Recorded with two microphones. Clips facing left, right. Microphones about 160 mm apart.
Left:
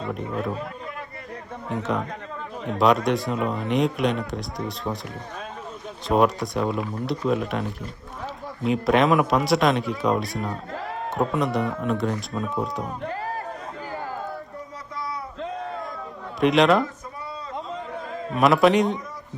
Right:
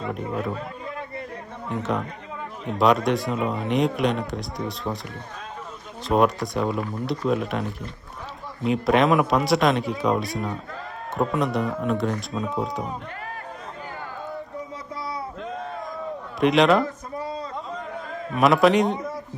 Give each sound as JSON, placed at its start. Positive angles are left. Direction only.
{"t": 0.1, "sound": "speech", "side_deg": 0}
{"t": 1.7, "sound": "speech", "side_deg": 0}
{"t": 6.1, "sound": "speech", "side_deg": 0}
{"t": 13.1, "sound": "music", "side_deg": 35}
{"t": 16.4, "sound": "speech", "side_deg": 0}
{"t": 18.3, "sound": "speech", "side_deg": 0}